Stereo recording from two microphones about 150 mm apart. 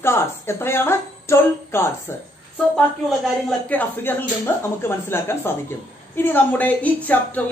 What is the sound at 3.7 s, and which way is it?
A man's voice, 10° left (ahead or behind).